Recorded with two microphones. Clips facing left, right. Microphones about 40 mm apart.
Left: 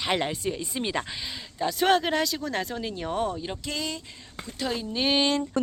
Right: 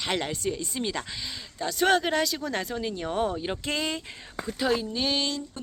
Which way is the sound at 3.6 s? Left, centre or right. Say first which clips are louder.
Right 3 dB; right.